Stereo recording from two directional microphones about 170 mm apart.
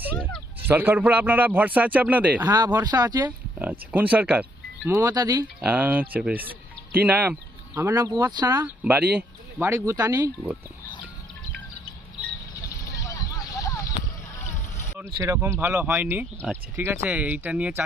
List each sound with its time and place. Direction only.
0.2 s a sound: 5° left (ahead or behind)
0.7 s a man's voice: 10° right (ahead or behind)
2.8 s speech: 25° right (ahead or behind)
3.2 s speech: 10° right (ahead or behind)
5.5 s a man's voice: 10° right (ahead or behind)
12.9 s a sound: 20° left (ahead or behind)
14.9 s a man's voice: 15° right (ahead or behind)